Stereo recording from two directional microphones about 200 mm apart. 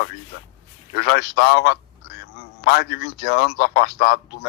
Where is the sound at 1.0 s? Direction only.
55° left (ahead or behind).